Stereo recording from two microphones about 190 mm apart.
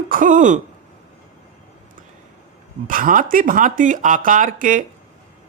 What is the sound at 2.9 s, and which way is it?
Speech, 45° right (ahead or behind).